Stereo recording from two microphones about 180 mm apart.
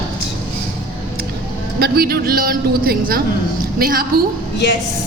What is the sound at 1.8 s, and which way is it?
A woman's voice, 60° right (ahead or behind).